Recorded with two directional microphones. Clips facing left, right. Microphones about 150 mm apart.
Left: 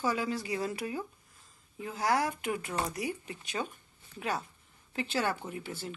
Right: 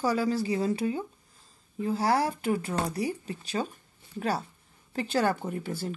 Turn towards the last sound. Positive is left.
turn(degrees=-40)  # may be behind; listen again after turning